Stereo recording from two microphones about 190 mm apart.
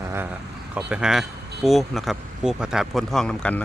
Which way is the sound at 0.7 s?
5° right (ahead or behind).